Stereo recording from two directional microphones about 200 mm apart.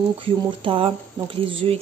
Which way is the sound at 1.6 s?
30° right (ahead or behind).